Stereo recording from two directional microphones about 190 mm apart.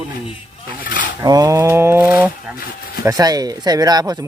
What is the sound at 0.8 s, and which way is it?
Dishes, 45° left (ahead or behind).